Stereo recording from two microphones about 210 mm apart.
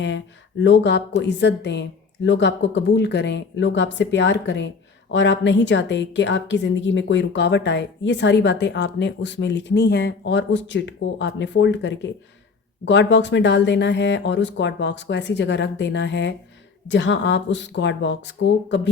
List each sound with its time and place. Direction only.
0.6 s a woman's voice: 55° left (ahead or behind)